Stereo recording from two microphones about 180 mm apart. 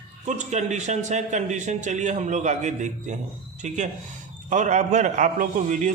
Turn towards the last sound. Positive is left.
turn(degrees=-45)  # may be behind; listen again after turning